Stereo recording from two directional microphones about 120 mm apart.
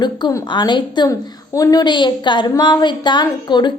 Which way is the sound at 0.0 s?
35° left (ahead or behind).